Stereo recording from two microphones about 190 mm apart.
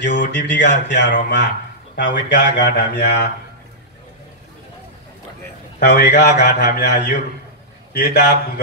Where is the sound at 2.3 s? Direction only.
70° left (ahead or behind).